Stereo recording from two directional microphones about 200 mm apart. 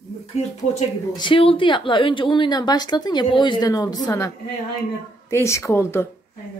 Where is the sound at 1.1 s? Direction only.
25° left (ahead or behind).